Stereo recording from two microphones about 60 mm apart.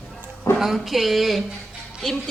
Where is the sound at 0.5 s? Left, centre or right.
Centre.